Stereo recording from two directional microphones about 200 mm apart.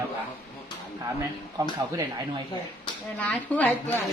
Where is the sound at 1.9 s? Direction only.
15° right (ahead or behind).